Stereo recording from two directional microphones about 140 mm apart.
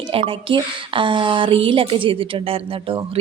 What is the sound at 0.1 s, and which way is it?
Speech, 40° right (ahead or behind).